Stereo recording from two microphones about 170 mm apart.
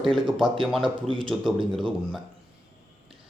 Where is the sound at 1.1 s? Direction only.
30° right (ahead or behind).